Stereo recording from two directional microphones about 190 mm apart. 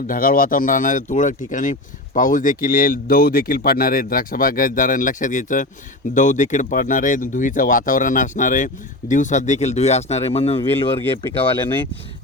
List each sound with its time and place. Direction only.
0.1 s speech: 50° left (ahead or behind); by 10.7 s 30° left (ahead or behind)
10.8 s speech: 15° left (ahead or behind)